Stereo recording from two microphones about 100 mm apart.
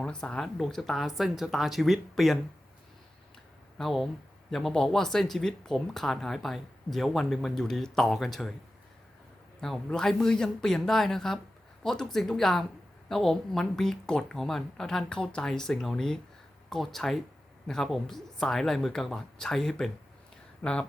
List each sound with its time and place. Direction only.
0.0 s speech: 10° left (ahead or behind)
3.8 s speech: centre (ahead or behind)
9.6 s speech: 5° left (ahead or behind)